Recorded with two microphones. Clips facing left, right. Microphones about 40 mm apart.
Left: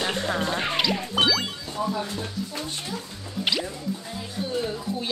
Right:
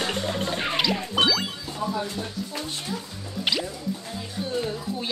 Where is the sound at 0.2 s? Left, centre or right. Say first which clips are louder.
Left 2 dB; left.